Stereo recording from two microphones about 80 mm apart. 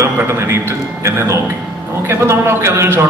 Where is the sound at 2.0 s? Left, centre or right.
Right.